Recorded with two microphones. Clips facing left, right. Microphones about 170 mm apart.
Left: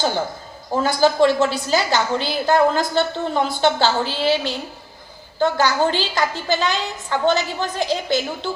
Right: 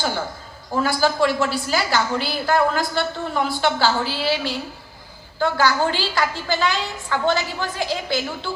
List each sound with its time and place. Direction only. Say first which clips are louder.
0.8 s a woman's voice: left 3 dB; 25° left (ahead or behind)